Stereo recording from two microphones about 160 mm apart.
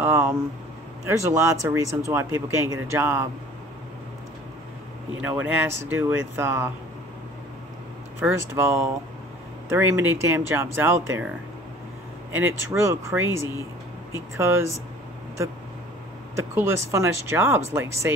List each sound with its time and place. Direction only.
0.0 s a sound: 15° right (ahead or behind)
1.0 s speech: 20° right (ahead or behind)
5.2 s speech: 10° right (ahead or behind)
8.2 s speech: 15° right (ahead or behind)
12.3 s speech: 15° right (ahead or behind)
16.3 s speech: 15° right (ahead or behind)